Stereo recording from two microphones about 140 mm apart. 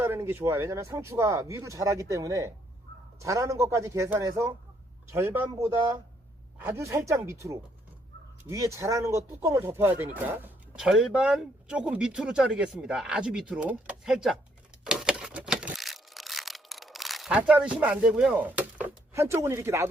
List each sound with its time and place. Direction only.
0.0 s speech: 15° right (ahead or behind)
6.7 s speech: 20° right (ahead or behind); by 14.3 s 5° right (ahead or behind)
14.8 s crumpling: 5° right (ahead or behind)